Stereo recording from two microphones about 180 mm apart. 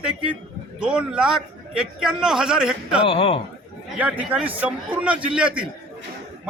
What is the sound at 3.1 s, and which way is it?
Speech, 30° left (ahead or behind).